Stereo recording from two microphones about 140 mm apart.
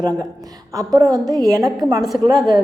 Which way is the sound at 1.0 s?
25° right (ahead or behind).